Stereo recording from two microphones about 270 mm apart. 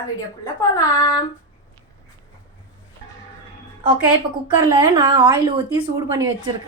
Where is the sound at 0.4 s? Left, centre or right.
Centre.